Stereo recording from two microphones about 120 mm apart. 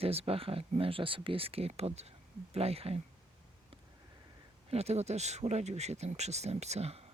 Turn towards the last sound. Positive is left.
turn(degrees=-60)  # may be behind; listen again after turning